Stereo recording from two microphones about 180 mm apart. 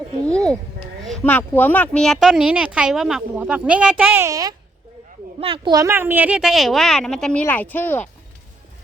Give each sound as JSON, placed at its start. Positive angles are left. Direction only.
{"t": 0.3, "sound": "speech", "side_deg": 5}
{"t": 5.4, "sound": "a child's voice", "side_deg": -30}
{"t": 5.7, "sound": "speech", "side_deg": -15}